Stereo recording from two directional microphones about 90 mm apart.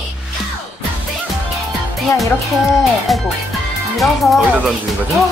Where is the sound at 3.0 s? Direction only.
Centre (ahead or behind).